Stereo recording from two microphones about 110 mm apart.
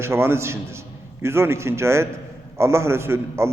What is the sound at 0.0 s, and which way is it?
A man's voice, 25° right (ahead or behind).